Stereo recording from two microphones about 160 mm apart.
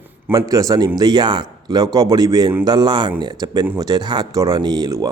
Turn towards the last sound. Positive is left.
turn(degrees=-25)  # may be behind; listen again after turning